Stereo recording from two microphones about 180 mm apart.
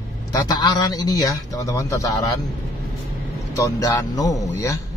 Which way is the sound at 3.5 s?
20° left (ahead or behind).